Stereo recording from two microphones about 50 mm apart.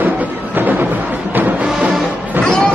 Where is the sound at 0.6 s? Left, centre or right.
Right.